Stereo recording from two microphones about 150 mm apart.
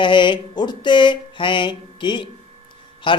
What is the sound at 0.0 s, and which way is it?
Mantra, 35° left (ahead or behind).